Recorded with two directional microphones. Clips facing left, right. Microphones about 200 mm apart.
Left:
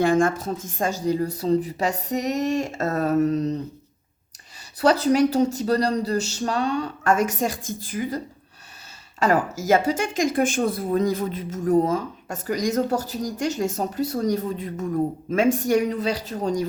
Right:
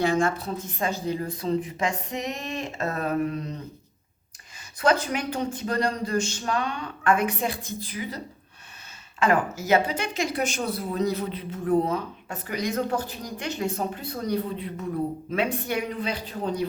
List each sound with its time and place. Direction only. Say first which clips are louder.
0.0 s speech: left 4 dB; 50° left (ahead or behind)
4.8 s speech: left 6 dB; 35° left (ahead or behind)